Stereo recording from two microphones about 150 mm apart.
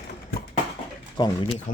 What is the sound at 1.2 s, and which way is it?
Speech, 30° left (ahead or behind).